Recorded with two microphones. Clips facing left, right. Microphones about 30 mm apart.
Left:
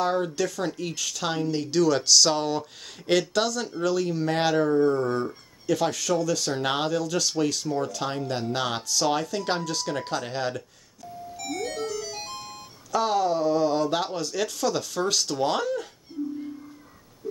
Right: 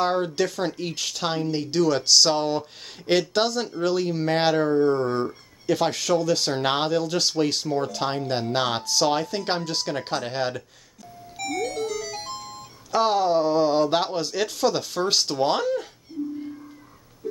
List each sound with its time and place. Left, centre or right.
0.4 s speech: right; by 2.6 s centre
3.1 s speech: right
9.4 s speech: right
9.7 s speech: right
11.4 s music: right
12.9 s speech: right
15.6 s speech: right
16.2 s music: centre